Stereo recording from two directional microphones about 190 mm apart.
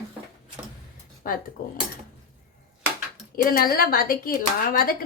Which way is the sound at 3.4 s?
50° left (ahead or behind).